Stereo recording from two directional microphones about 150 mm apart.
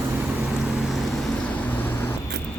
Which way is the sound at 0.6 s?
Centre (ahead or behind).